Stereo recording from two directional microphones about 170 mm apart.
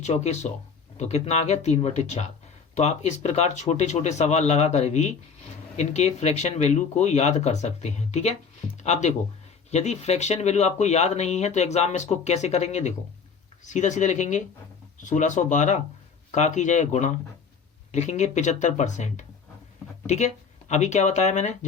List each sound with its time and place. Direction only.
0.0 s speech: 40° left (ahead or behind)